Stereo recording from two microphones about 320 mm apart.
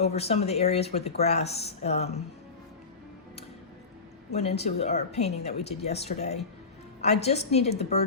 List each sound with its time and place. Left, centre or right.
0.0 s speech: centre
4.3 s speech: centre